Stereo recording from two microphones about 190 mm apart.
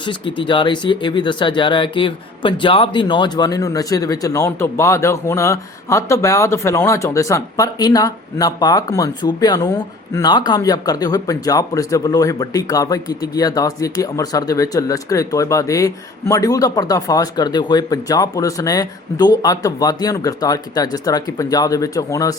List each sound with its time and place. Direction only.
0.0 s speech: 25° left (ahead or behind)